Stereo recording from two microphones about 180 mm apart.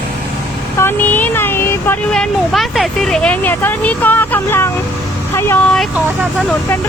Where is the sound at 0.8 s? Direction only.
10° left (ahead or behind).